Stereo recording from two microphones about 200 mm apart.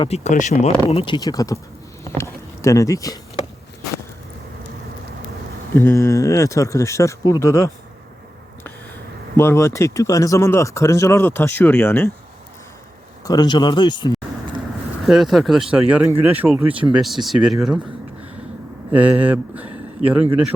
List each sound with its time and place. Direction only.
0.0 s speech: 35° left (ahead or behind); by 1.5 s 15° left (ahead or behind)
2.1 s a sound: 15° left (ahead or behind)
5.7 s speech: 15° left (ahead or behind)
9.3 s speech: 10° left (ahead or behind)
13.2 s speech: 20° left (ahead or behind)
15.0 s speech: centre (ahead or behind)
18.9 s speech: 5° right (ahead or behind)